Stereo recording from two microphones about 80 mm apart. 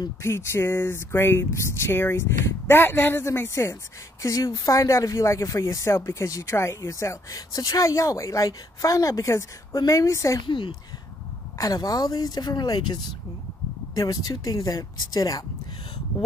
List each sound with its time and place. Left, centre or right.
0.2 s speech: left
4.2 s speech: left
10.4 s speech: left
11.5 s speech: left